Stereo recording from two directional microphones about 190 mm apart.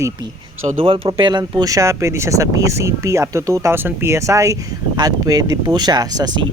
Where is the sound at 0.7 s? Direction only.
30° right (ahead or behind).